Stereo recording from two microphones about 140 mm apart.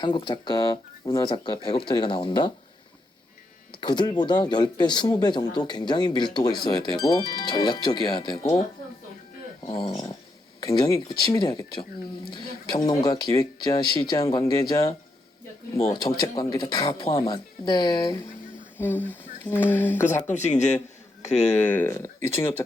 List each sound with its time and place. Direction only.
0.0 s speech: 35° left (ahead or behind)
3.8 s speech: 35° left (ahead or behind)
9.6 s speech: 35° left (ahead or behind)
16.1 s speech: 30° left (ahead or behind)
18.8 s speech: 15° left (ahead or behind)
20.3 s speech: 55° left (ahead or behind)
21.6 s speech: 15° left (ahead or behind)